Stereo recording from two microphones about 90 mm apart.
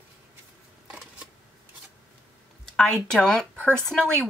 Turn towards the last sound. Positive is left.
turn(degrees=5)  # may be behind; listen again after turning